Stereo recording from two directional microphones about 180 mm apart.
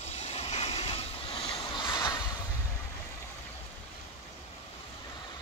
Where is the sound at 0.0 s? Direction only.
35° left (ahead or behind).